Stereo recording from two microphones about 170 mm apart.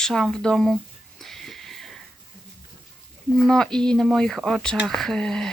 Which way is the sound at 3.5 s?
5° left (ahead or behind).